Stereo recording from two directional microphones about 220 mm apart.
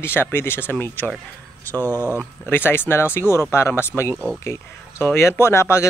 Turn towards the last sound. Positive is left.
turn(degrees=10)  # may be behind; listen again after turning